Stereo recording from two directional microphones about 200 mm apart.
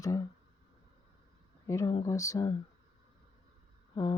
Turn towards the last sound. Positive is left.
turn(degrees=20)  # may be behind; listen again after turning